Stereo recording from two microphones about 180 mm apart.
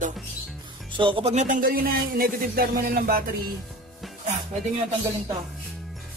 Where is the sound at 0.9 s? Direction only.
30° right (ahead or behind); by 3.3 s 55° right (ahead or behind).